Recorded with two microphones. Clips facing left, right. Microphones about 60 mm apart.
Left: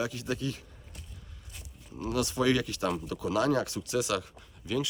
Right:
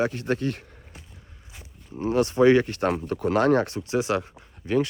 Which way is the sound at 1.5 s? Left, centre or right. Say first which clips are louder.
Right 6 dB; right.